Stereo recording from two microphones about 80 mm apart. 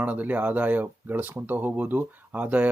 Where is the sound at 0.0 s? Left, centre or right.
Centre.